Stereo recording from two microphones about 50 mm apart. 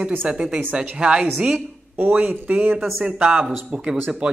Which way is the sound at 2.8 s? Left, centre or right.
Centre.